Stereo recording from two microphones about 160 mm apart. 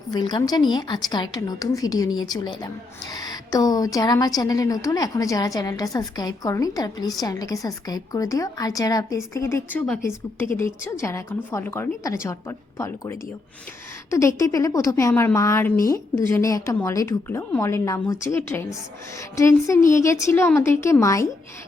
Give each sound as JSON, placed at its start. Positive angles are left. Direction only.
{"t": 0.1, "sound": "a woman's voice", "side_deg": 25}